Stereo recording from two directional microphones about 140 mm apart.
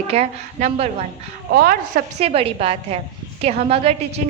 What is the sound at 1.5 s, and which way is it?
Speech, 90° right.